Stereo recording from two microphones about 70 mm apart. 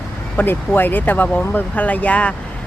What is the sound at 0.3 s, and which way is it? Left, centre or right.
Speech, left.